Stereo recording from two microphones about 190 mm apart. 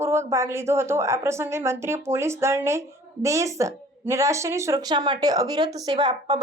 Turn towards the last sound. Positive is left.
turn(degrees=-20)  # may be behind; listen again after turning